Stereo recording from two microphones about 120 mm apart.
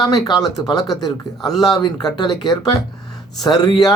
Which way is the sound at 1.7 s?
35° left (ahead or behind).